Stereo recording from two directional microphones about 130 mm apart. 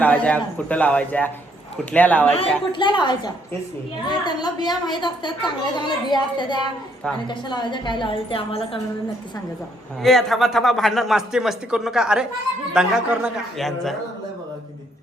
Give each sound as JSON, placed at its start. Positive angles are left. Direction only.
{"t": 0.0, "sound": "a man's voice", "side_deg": 10}
{"t": 2.7, "sound": "a woman's voice", "side_deg": 35}
{"t": 10.0, "sound": "a man's voice", "side_deg": 0}